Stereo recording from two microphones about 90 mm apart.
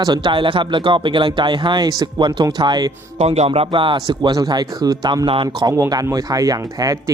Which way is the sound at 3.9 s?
55° right (ahead or behind).